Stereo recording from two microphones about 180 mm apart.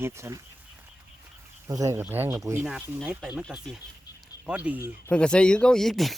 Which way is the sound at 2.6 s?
Centre (ahead or behind).